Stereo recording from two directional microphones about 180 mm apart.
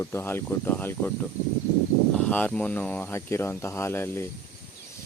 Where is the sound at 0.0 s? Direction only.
15° left (ahead or behind).